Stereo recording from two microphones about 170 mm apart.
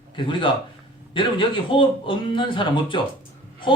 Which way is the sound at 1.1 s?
30° left (ahead or behind).